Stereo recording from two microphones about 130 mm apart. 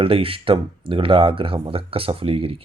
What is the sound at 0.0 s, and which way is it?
Speech, 45° right (ahead or behind).